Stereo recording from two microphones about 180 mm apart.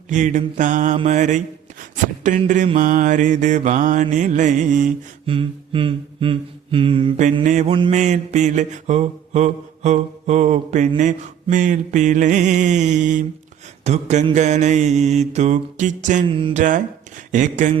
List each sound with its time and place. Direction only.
0.1 s mantra: 45° right (ahead or behind)
1.8 s speech: 45° right (ahead or behind)
2.7 s mantra: 45° right (ahead or behind)
5.2 s a sound: 30° right (ahead or behind)
7.4 s mantra: 45° right (ahead or behind)
16.2 s music: 30° right (ahead or behind)
16.6 s speech: 45° right (ahead or behind)